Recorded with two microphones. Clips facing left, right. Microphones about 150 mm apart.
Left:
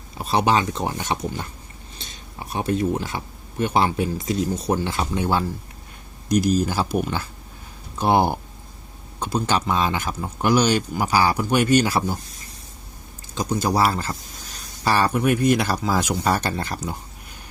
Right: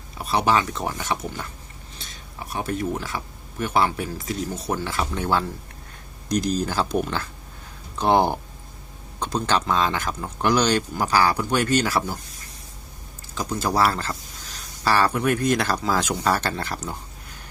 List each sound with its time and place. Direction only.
0.3 s speech: 25° left (ahead or behind)
2.5 s speech: 20° left (ahead or behind)
13.3 s speech: 20° left (ahead or behind)